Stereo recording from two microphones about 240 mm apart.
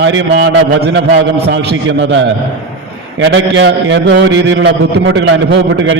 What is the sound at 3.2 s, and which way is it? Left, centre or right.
A man's voice, right.